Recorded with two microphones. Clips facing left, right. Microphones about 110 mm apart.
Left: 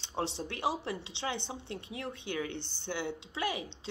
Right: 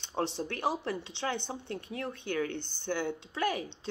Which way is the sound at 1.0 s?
50° right (ahead or behind).